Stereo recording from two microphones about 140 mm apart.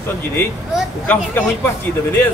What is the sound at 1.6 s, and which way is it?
Speech, 15° left (ahead or behind).